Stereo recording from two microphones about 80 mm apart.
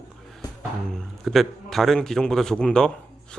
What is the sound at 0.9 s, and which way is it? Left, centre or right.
A man's voice, centre.